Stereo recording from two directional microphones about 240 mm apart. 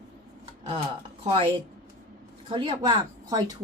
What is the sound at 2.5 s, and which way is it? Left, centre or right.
Speech, right.